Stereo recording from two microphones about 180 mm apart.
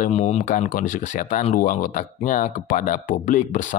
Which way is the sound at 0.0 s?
40° left (ahead or behind).